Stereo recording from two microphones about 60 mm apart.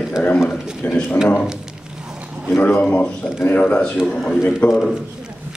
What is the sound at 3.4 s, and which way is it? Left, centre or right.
A man's voice, left.